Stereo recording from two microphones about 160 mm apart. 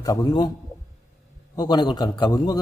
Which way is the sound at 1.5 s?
25° left (ahead or behind).